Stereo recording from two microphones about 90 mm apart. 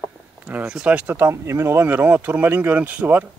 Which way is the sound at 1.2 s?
30° right (ahead or behind).